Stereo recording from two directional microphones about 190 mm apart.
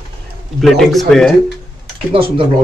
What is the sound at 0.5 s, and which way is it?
Speech, centre (ahead or behind).